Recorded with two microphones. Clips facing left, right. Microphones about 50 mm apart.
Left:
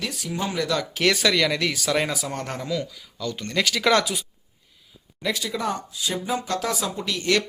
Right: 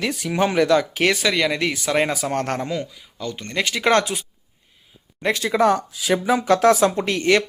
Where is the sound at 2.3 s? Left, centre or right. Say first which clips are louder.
Right 7 dB; right.